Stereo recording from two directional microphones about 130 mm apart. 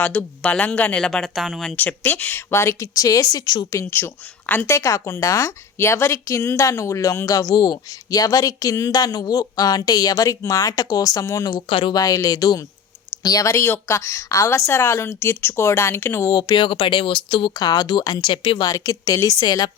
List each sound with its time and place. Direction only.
0.0 s speech: 10° left (ahead or behind)
1.7 s speech: 15° left (ahead or behind); by 3.7 s 30° left (ahead or behind)
3.7 s speech: 20° left (ahead or behind)
11.7 s speech: 40° left (ahead or behind)
11.9 s speech: 25° left (ahead or behind)
16.4 s speech: 35° left (ahead or behind)